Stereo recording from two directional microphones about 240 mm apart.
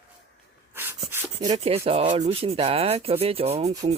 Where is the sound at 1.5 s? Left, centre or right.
Right.